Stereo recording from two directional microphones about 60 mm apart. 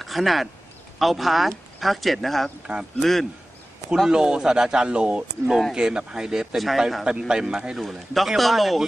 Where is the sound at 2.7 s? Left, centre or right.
Centre.